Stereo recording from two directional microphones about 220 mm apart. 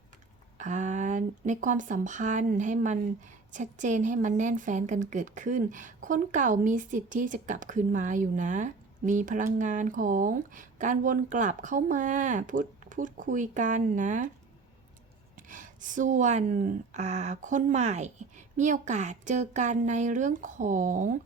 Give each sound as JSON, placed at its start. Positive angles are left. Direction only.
{"t": 0.6, "sound": "a woman's voice", "side_deg": -35}
{"t": 15.4, "sound": "a woman's voice", "side_deg": -35}